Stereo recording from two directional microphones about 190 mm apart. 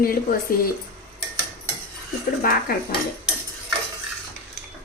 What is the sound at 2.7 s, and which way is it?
Speech, 50° left (ahead or behind).